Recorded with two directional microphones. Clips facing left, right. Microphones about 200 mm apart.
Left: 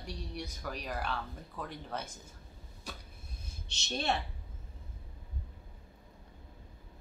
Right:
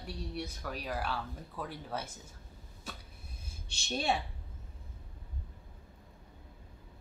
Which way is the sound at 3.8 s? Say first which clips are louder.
Right 1 dB; 10° right (ahead or behind).